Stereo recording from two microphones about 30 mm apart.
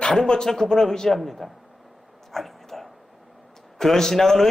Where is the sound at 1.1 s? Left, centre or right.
Centre.